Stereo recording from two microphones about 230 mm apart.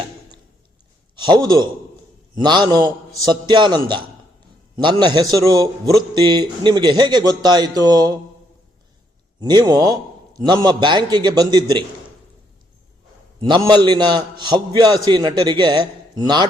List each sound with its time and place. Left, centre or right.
1.1 s a man's voice: centre
9.4 s a man's voice: centre
13.7 s a man's voice: centre